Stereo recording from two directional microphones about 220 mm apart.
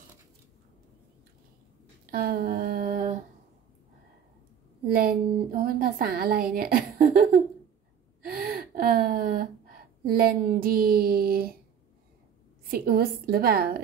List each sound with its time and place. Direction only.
2.0 s a sound: 45° right (ahead or behind)
4.9 s a woman's voice: 40° right (ahead or behind)
12.7 s a woman's voice: 45° right (ahead or behind)